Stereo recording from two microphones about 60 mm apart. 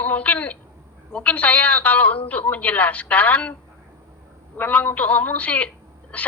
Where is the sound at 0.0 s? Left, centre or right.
Left.